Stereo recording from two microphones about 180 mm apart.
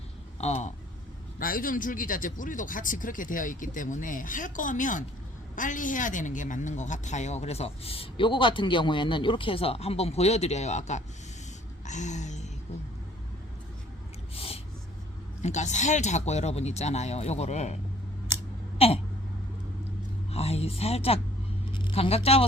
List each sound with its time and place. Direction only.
0.3 s speech: 35° left (ahead or behind)
1.4 s speech: 50° left (ahead or behind)
11.9 s a sound: 40° left (ahead or behind)
14.3 s gasp: 35° left (ahead or behind)
15.4 s speech: 40° left (ahead or behind)
18.8 s speech: 35° left (ahead or behind)
20.3 s speech: 35° left (ahead or behind)